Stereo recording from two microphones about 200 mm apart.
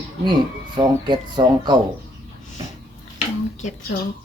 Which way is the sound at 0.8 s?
20° right (ahead or behind).